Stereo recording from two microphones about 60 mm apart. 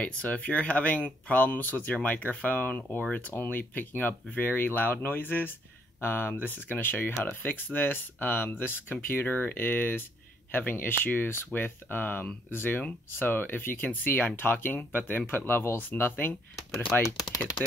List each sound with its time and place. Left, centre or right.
0.0 s speech: left